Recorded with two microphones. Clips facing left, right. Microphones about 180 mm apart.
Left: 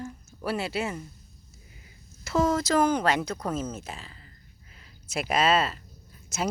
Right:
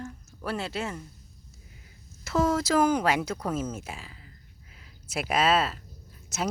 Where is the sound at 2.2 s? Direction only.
Centre (ahead or behind).